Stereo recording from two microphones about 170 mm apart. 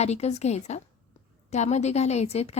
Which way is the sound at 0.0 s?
40° left (ahead or behind).